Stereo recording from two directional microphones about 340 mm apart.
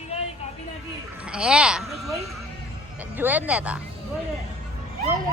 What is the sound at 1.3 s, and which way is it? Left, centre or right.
Speech, centre.